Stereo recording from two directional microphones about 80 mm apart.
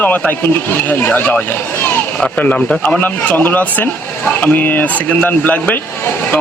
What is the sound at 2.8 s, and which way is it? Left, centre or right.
Speech, left.